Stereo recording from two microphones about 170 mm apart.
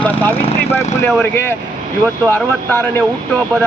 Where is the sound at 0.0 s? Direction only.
15° left (ahead or behind).